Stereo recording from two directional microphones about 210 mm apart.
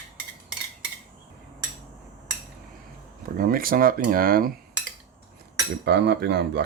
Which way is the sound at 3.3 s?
45° right (ahead or behind).